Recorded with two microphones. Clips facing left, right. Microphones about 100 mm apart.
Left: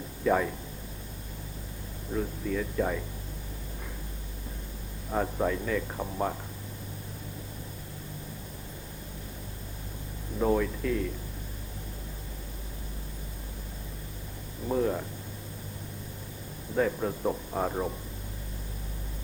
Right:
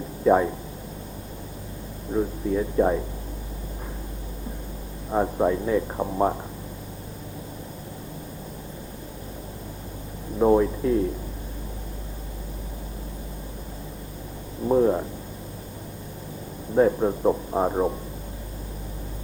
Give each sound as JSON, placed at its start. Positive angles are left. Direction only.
{"t": 0.3, "sound": "speech", "side_deg": -25}
{"t": 2.1, "sound": "speech", "side_deg": -30}
{"t": 5.1, "sound": "speech", "side_deg": -25}
{"t": 10.3, "sound": "speech", "side_deg": -30}
{"t": 14.7, "sound": "speech", "side_deg": -30}
{"t": 16.7, "sound": "speech", "side_deg": -30}